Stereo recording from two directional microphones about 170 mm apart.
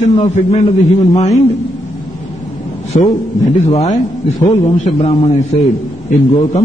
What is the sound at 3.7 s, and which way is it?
A man's voice, 40° left (ahead or behind).